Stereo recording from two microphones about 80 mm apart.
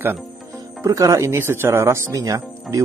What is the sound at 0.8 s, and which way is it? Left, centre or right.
Speech, right.